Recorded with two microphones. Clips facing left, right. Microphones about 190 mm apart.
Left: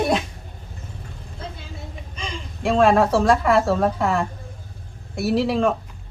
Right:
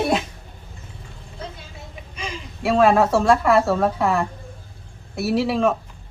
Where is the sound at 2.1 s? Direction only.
10° right (ahead or behind).